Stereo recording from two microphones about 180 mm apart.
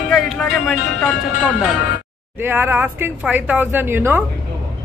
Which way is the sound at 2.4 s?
10° right (ahead or behind).